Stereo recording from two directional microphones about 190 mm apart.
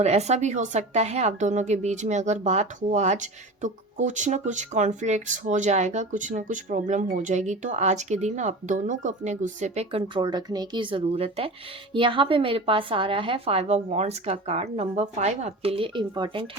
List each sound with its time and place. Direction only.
0.0 s a woman's voice: 35° right (ahead or behind)